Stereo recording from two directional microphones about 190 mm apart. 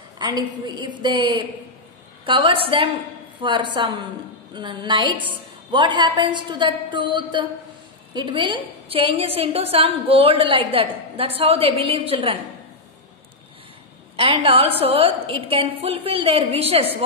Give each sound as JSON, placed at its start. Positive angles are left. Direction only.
{"t": 0.2, "sound": "a woman's voice", "side_deg": -20}
{"t": 14.1, "sound": "a woman's voice", "side_deg": -25}